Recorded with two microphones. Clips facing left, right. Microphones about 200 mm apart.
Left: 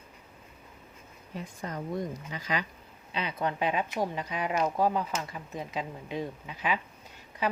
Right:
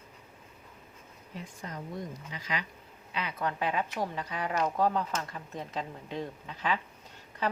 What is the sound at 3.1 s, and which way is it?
A woman's voice, 20° left (ahead or behind).